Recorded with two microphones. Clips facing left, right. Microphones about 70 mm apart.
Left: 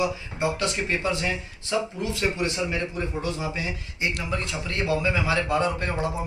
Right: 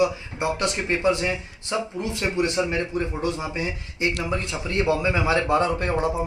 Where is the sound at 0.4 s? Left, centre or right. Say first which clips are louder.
Right 1 dB; right.